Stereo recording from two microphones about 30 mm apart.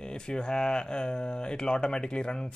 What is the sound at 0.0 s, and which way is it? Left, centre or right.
Speech, left.